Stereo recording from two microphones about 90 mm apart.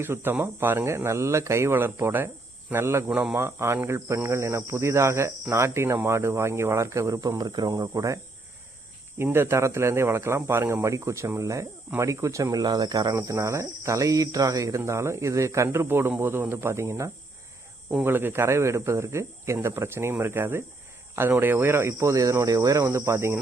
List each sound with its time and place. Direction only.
0.0 s speech: 25° right (ahead or behind); by 8.2 s 40° right (ahead or behind)
9.1 s speech: 25° right (ahead or behind)